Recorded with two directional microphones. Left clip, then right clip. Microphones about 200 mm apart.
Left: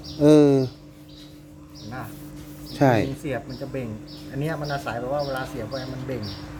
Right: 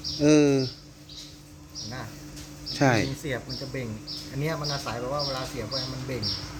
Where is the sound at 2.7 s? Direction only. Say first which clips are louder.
Left 3 dB; 15° left (ahead or behind).